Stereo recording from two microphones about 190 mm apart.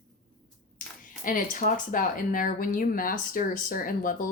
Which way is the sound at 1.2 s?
45° left (ahead or behind).